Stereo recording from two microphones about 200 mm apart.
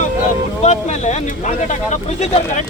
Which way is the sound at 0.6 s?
35° left (ahead or behind).